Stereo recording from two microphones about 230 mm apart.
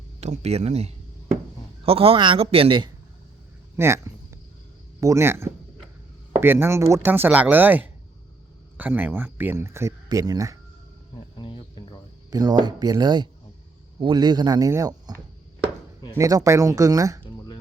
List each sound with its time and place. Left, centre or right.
0.2 s a man's voice: right
3.8 s a sound: centre
4.9 s speech: centre
11.3 s cricket: left
12.3 s speech: centre